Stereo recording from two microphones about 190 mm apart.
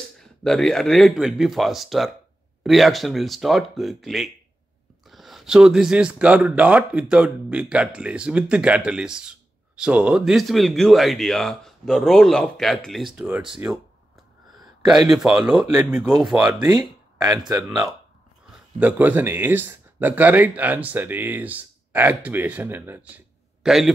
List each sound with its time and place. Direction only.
0.2 s speech: centre (ahead or behind)
15.0 s speech: centre (ahead or behind)
16.6 s speech: 20° right (ahead or behind)
17.6 s speech: centre (ahead or behind)